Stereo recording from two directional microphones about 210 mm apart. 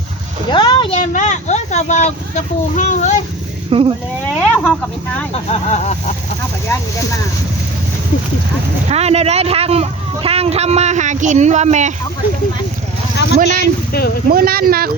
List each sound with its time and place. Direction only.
0.5 s vehicle: 20° left (ahead or behind)
3.7 s speech: 25° right (ahead or behind)
4.4 s speech: 5° left (ahead or behind)
5.3 s speech: 30° left (ahead or behind)
8.9 s speech: 30° right (ahead or behind)
13.2 s speech: 60° left (ahead or behind)
14.3 s speech: 45° right (ahead or behind)